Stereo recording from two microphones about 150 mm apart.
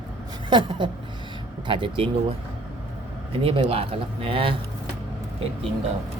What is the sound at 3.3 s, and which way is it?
Speech, 35° right (ahead or behind).